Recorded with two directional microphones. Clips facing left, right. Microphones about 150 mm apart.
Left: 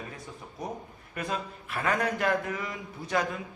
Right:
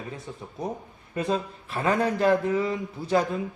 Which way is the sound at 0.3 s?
20° right (ahead or behind).